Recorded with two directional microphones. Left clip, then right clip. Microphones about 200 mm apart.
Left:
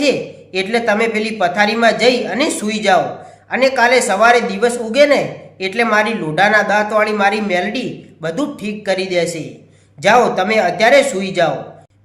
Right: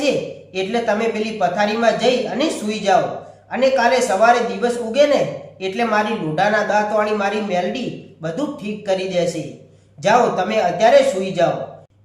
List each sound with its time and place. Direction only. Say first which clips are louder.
0.5 s speech: left 4 dB; 45° left (ahead or behind)